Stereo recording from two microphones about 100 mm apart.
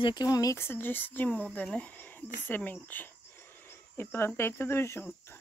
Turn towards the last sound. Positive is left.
turn(degrees=25)  # may be behind; listen again after turning